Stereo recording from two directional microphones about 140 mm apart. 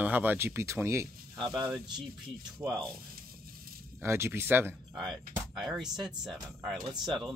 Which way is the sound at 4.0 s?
20° right (ahead or behind).